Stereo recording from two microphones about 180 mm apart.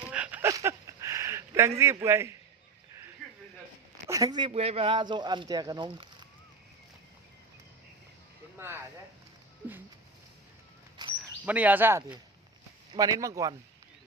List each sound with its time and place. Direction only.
0.1 s a sound: 10° right (ahead or behind)
1.8 s speech: 15° right (ahead or behind)
4.1 s speech: 20° right (ahead or behind)
8.5 s speech: 15° right (ahead or behind)
11.4 s speech: 10° right (ahead or behind)